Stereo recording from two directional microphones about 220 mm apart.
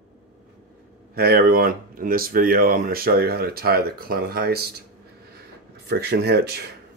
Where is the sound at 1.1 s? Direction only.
45° right (ahead or behind).